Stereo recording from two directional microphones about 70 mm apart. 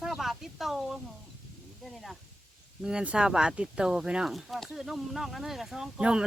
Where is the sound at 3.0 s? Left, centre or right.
Centre.